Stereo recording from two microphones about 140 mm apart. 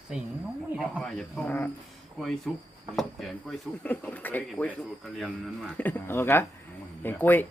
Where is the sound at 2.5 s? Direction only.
Centre (ahead or behind).